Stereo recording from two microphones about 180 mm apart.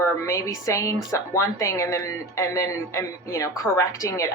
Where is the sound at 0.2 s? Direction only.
15° left (ahead or behind).